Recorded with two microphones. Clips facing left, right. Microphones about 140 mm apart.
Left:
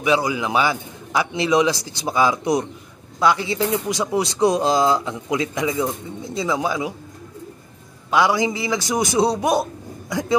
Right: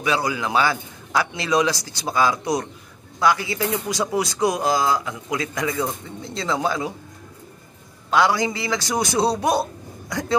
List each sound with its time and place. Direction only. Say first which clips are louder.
0.0 s a man's voice: left 3 dB; 20° left (ahead or behind)
8.1 s a man's voice: left 1 dB; 15° left (ahead or behind)